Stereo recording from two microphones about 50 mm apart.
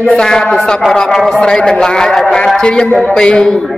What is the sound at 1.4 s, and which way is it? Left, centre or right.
A man's voice, centre.